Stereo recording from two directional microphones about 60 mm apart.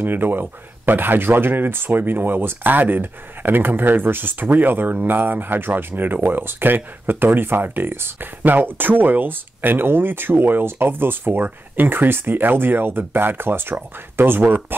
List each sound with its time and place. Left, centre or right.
0.0 s speech: right